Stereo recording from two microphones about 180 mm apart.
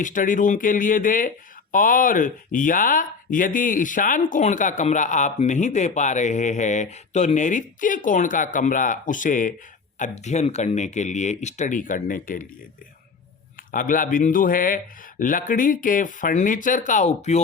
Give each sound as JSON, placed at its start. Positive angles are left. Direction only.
{"t": 0.0, "sound": "speech", "side_deg": 45}
{"t": 13.7, "sound": "speech", "side_deg": 50}